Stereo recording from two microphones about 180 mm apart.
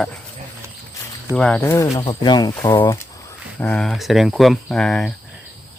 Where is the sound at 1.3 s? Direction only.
5° left (ahead or behind); by 2.9 s 20° left (ahead or behind).